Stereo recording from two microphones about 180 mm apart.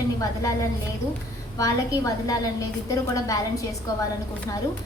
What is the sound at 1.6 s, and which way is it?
A woman's voice, 20° left (ahead or behind).